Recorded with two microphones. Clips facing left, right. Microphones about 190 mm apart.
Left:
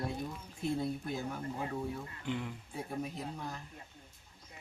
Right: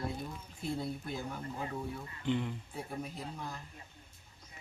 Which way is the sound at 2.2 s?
5° left (ahead or behind).